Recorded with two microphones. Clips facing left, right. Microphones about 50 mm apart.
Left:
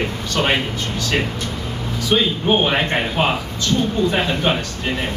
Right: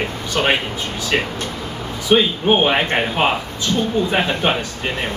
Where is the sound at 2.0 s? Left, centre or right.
Right.